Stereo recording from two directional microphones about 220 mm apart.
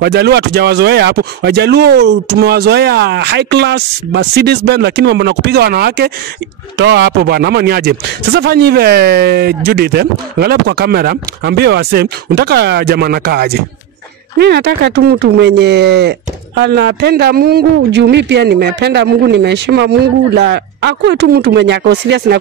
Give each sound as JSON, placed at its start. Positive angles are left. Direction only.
{"t": 0.0, "sound": "speech", "side_deg": -45}